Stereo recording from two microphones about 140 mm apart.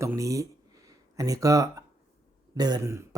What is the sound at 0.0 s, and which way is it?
Speech, 20° right (ahead or behind).